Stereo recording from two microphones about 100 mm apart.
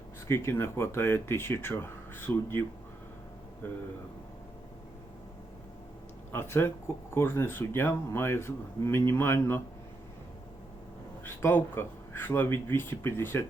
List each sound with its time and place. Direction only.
0.3 s speech: 25° left (ahead or behind)
6.3 s speech: 25° left (ahead or behind)
11.3 s speech: 25° left (ahead or behind)